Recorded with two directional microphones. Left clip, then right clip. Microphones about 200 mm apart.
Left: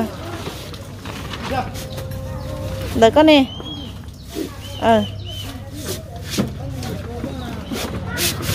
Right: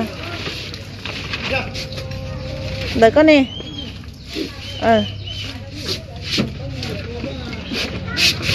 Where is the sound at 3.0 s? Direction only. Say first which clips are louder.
Even; 5° left (ahead or behind).